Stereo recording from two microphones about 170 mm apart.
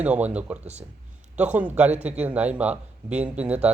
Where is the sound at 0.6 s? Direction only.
40° right (ahead or behind).